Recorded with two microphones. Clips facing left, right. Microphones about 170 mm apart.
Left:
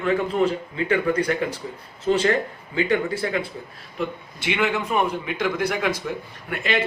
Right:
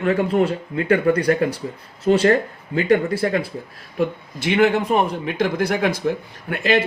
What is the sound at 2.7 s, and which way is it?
A man's voice, 35° right (ahead or behind).